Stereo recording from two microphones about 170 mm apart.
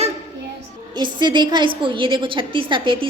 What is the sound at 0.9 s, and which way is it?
A woman's voice, 25° right (ahead or behind).